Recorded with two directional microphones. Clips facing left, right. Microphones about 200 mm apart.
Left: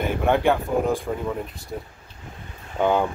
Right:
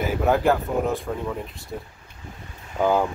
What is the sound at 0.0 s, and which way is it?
Speech, 5° right (ahead or behind).